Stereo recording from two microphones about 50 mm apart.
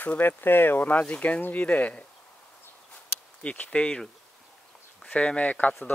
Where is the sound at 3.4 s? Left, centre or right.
Left.